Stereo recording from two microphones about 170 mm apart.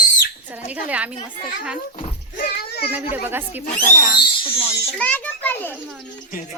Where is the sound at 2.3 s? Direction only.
60° left (ahead or behind).